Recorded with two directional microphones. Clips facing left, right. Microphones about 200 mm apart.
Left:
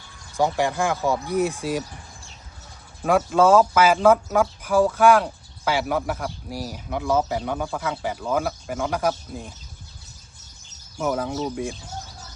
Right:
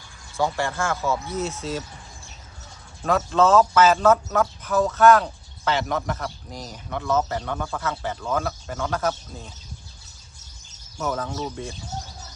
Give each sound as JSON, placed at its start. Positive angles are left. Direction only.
{"t": 0.3, "sound": "speech", "side_deg": 15}
{"t": 3.0, "sound": "speech", "side_deg": 10}
{"t": 10.9, "sound": "speech", "side_deg": 10}